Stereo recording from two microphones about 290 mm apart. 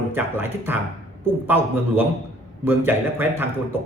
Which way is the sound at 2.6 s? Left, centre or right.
Centre.